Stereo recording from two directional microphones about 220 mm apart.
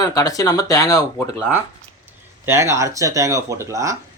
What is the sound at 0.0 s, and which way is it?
Speech, 15° left (ahead or behind).